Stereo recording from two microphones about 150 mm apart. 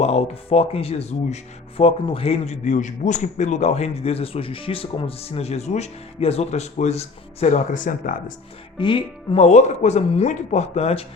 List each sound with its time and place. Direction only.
0.0 s speech: 45° left (ahead or behind); by 8.2 s 60° left (ahead or behind)
8.8 s speech: 35° left (ahead or behind)